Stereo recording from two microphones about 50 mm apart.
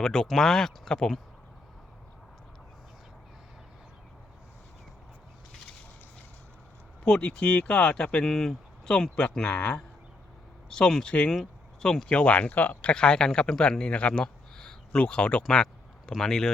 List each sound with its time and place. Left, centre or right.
0.0 s speech: centre
7.3 s speech: left
8.2 s speech: centre
8.9 s speech: centre
9.5 s speech: left
10.7 s speech: centre; by 12.9 s left
12.9 s speech: centre
14.2 s a sound: centre
14.9 s speech: left
15.4 s a sound: centre
16.1 s speech: centre